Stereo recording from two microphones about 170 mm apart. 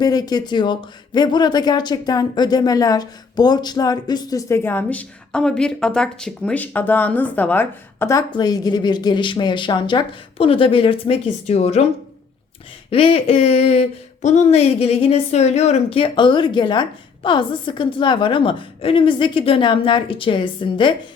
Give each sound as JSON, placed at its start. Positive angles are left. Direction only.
{"t": 0.0, "sound": "speech", "side_deg": 25}
{"t": 12.9, "sound": "speech", "side_deg": 35}